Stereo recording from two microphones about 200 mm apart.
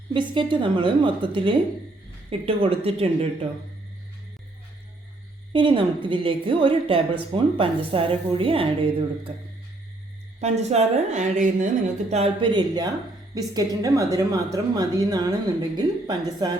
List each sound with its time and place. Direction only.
0.1 s a woman's voice: 25° right (ahead or behind)
5.5 s a woman's voice: 25° right (ahead or behind)
10.4 s a woman's voice: 35° right (ahead or behind)
12.1 s a woman's voice: 30° right (ahead or behind)